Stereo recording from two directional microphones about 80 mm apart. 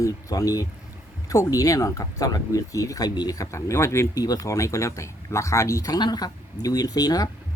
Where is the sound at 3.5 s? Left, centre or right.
Left.